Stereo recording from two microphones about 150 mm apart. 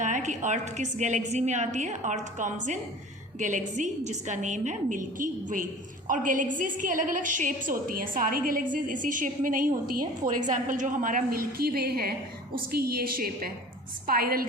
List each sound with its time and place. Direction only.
0.0 s a woman's voice: 55° right (ahead or behind); by 14.4 s 80° right